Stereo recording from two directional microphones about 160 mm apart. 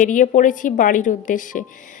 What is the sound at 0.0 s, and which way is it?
A woman's voice, 55° left (ahead or behind).